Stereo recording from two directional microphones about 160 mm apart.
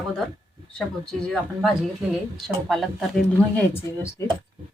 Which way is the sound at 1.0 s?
5° left (ahead or behind).